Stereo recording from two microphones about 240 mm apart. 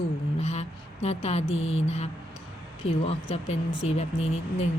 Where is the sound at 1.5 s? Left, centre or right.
Left.